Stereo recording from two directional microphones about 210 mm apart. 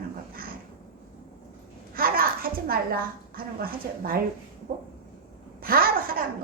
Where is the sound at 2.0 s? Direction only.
45° right (ahead or behind).